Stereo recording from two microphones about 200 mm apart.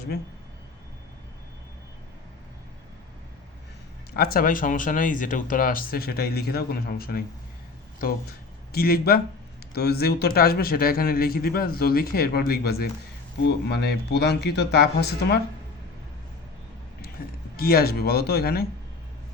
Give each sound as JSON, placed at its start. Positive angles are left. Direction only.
{"t": 4.1, "sound": "a man's voice", "side_deg": 50}
{"t": 8.7, "sound": "a man's voice", "side_deg": 50}
{"t": 17.2, "sound": "a sound", "side_deg": 45}
{"t": 17.6, "sound": "a man's voice", "side_deg": 50}